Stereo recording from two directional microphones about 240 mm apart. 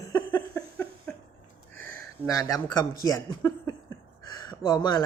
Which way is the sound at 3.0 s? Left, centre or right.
Centre.